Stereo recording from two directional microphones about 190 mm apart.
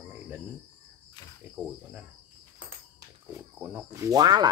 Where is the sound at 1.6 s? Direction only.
5° right (ahead or behind).